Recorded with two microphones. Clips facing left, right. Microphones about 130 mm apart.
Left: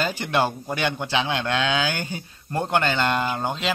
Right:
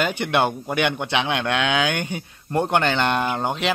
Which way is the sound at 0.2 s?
20° right (ahead or behind).